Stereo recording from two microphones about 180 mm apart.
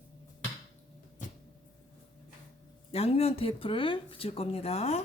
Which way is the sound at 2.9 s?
35° left (ahead or behind).